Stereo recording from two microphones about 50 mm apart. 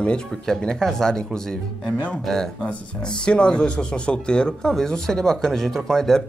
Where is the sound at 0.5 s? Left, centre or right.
Centre.